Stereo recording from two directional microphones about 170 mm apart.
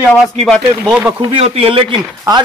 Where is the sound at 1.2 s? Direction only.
35° right (ahead or behind).